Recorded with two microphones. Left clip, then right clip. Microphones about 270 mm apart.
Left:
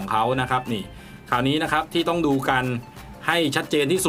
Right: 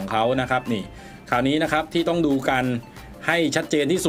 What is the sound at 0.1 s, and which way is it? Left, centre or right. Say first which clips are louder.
Speech: even; centre.